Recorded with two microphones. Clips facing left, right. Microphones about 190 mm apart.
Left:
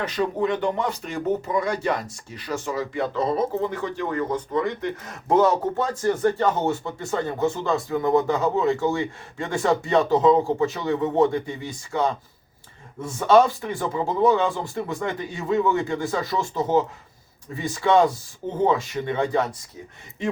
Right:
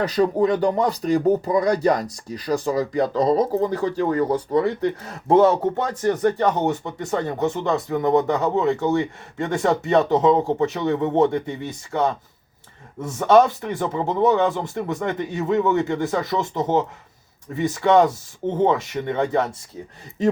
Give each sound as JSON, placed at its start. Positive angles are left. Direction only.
{"t": 0.0, "sound": "speech", "side_deg": -35}